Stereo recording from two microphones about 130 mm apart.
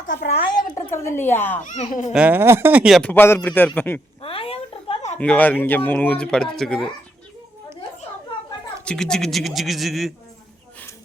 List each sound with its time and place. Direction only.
0.3 s a child's voice: 35° left (ahead or behind)
0.9 s speech: 20° left (ahead or behind)
1.6 s a child's voice: 70° left (ahead or behind)
2.1 s speech: 10° right (ahead or behind)
3.0 s speech: 15° left (ahead or behind)
4.2 s a sound: 45° left (ahead or behind)
5.1 s speech: 10° left (ahead or behind)
8.8 s speech: 5° left (ahead or behind)